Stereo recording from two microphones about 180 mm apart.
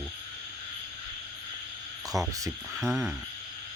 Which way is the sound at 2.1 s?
20° right (ahead or behind).